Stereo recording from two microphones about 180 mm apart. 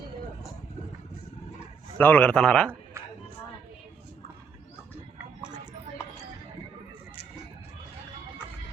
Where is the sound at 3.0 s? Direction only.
15° right (ahead or behind).